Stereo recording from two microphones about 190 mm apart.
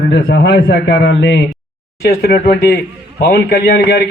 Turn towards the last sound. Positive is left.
turn(degrees=65)  # may be behind; listen again after turning